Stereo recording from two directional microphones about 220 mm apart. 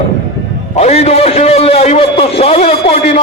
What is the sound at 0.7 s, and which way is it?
A man's voice, 30° left (ahead or behind).